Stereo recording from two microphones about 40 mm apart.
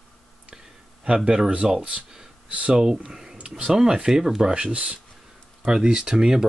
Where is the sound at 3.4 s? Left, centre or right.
Right.